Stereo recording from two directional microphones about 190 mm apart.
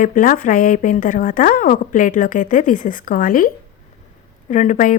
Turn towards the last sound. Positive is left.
turn(degrees=40)  # may be behind; listen again after turning